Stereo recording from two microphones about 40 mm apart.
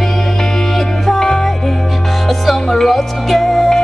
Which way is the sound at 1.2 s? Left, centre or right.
Centre.